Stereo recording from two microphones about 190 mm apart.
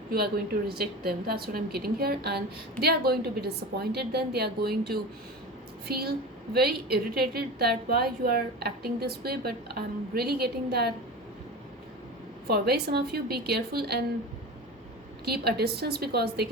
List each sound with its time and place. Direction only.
0.7 s a woman's voice: 55° right (ahead or behind)
12.5 s a woman's voice: 55° right (ahead or behind)
15.2 s a woman's voice: 55° right (ahead or behind)